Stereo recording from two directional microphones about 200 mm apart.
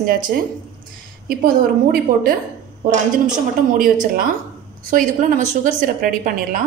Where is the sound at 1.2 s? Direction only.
50° right (ahead or behind).